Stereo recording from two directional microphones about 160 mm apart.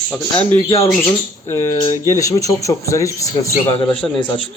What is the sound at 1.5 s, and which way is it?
Speech, 15° left (ahead or behind).